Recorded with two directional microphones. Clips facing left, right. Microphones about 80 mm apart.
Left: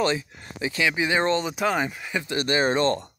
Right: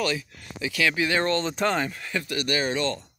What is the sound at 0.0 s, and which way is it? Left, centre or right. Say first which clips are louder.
Speech: left 3 dB; left.